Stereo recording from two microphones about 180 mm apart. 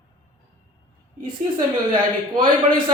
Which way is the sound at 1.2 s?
25° right (ahead or behind).